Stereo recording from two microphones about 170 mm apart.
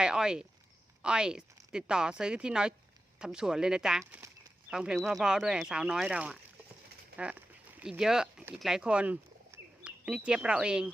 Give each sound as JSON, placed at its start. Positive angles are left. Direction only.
{"t": 0.0, "sound": "speech", "side_deg": -5}